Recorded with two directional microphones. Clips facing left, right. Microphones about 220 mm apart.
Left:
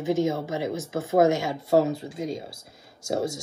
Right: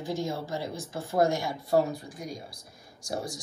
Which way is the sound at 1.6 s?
25° left (ahead or behind).